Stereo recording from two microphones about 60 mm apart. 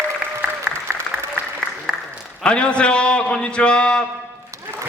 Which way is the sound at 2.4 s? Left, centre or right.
Centre.